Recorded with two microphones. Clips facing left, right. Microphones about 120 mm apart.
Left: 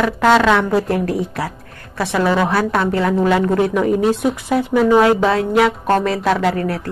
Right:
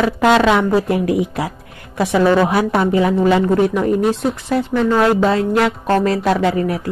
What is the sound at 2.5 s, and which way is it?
A woman's voice, 15° right (ahead or behind).